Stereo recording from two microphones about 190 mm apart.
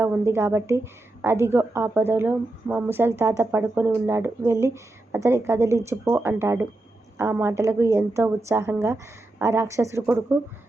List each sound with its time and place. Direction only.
0.0 s a woman's voice: 10° right (ahead or behind)